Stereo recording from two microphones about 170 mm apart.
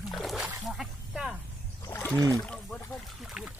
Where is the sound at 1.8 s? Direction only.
10° left (ahead or behind).